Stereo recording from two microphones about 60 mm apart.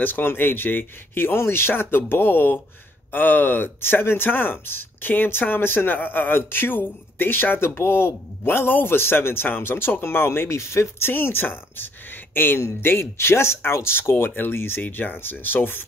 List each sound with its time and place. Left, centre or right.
0.0 s speech: left